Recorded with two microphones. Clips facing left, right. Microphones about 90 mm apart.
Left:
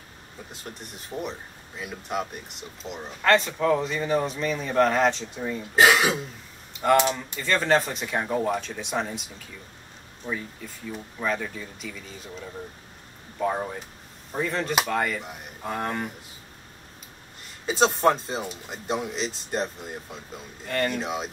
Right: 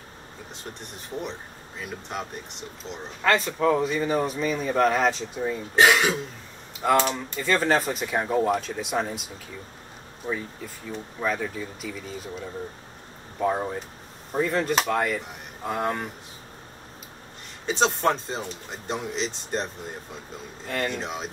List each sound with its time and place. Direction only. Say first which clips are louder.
0.5 s speech: right 1 dB; 5° left (ahead or behind)
5.9 s speech: even; 10° left (ahead or behind)
7.4 s speech: even; 5° right (ahead or behind)
10.2 s speech: right 2 dB; 30° right (ahead or behind)
11.1 s speech: right 1 dB; 5° right (ahead or behind)
13.4 s speech: right 2 dB; 10° right (ahead or behind)
17.6 s speech: left 2 dB; 5° left (ahead or behind)